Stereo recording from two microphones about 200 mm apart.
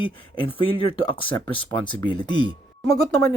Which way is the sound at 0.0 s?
25° left (ahead or behind).